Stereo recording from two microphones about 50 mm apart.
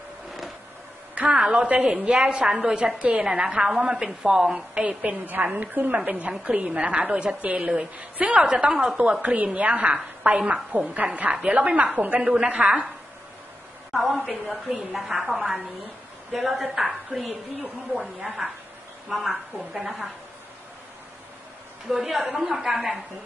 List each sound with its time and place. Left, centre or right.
1.1 s a sound: right
1.4 s a woman's voice: centre
1.7 s a woman's voice: right
13.9 s a woman's voice: centre
15.2 s a woman's voice: centre
16.3 s a woman's voice: centre
21.9 s a woman's voice: centre